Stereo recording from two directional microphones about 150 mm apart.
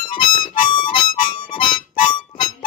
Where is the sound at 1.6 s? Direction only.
35° left (ahead or behind).